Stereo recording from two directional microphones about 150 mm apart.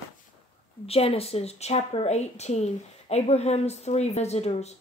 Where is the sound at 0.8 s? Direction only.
40° left (ahead or behind).